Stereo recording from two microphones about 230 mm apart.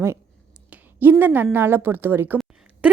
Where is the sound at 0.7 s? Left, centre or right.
Centre.